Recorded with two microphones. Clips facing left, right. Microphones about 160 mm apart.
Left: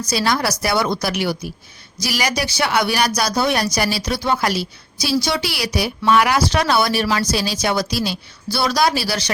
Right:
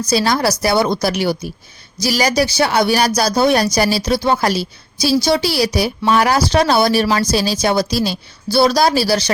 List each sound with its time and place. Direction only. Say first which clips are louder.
0.1 s speech: right 4 dB; 30° right (ahead or behind)